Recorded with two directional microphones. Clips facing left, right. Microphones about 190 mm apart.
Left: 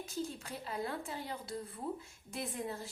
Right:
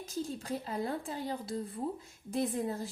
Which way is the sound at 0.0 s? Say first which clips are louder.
Right 3 dB; 35° right (ahead or behind).